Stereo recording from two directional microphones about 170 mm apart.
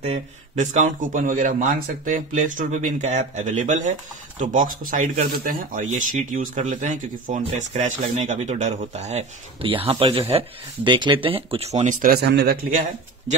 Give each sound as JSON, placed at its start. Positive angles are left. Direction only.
{"t": 0.0, "sound": "speech", "side_deg": -45}